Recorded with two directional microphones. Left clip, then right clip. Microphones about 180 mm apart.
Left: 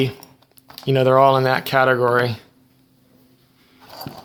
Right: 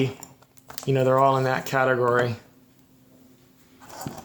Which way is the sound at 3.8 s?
10° left (ahead or behind).